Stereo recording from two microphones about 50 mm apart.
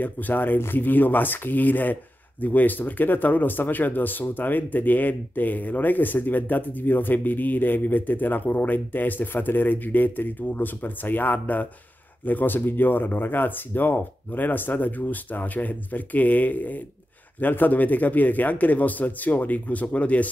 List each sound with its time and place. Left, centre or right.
0.0 s speech: left